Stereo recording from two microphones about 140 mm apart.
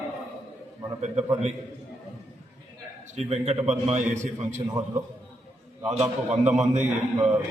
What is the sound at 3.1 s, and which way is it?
A man's voice, 50° right (ahead or behind).